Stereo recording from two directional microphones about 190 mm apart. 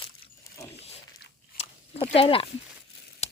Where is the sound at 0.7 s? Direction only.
35° left (ahead or behind).